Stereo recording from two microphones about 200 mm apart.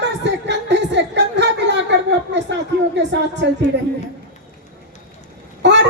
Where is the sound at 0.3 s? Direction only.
60° right (ahead or behind).